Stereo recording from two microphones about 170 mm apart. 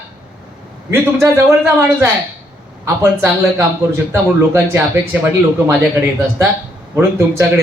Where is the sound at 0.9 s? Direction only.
15° right (ahead or behind).